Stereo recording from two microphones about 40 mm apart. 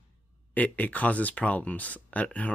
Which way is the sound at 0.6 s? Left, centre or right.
Left.